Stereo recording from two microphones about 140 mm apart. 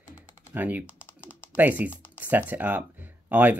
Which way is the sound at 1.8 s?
15° left (ahead or behind).